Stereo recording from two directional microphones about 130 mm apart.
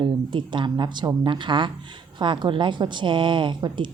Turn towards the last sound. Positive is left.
turn(degrees=-35)  # may be behind; listen again after turning